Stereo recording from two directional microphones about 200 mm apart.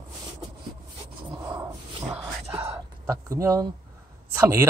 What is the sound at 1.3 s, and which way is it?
Dog, 20° right (ahead or behind).